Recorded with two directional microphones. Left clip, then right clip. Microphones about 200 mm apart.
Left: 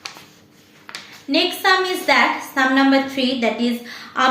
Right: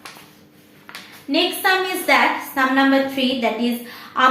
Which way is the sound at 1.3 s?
20° left (ahead or behind).